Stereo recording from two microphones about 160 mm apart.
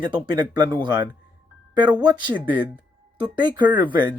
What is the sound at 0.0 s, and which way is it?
Speech, 25° right (ahead or behind).